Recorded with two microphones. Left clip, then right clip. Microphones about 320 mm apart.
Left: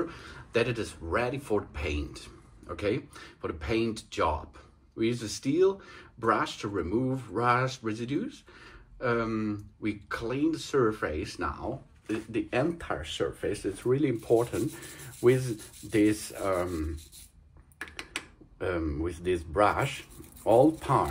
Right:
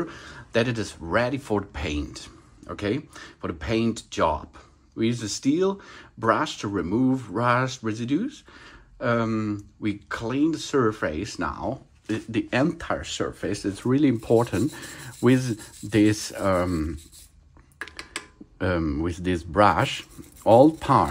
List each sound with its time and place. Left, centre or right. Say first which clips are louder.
0.0 s speech: right 2 dB; right
18.6 s speech: right 6 dB; right